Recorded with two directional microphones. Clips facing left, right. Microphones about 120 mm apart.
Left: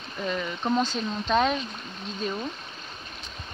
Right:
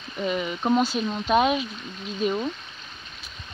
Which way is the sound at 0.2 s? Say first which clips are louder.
Right 3 dB; 10° right (ahead or behind).